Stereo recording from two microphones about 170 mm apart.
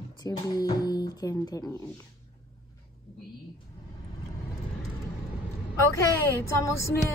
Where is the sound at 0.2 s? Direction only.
20° left (ahead or behind).